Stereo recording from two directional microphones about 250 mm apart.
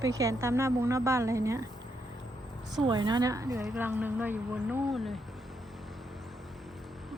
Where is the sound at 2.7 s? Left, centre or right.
Centre.